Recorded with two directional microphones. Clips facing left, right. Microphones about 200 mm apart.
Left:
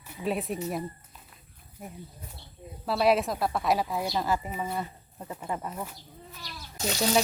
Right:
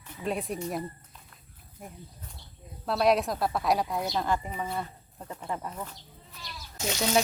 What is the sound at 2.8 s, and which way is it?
Frying, 5° left (ahead or behind).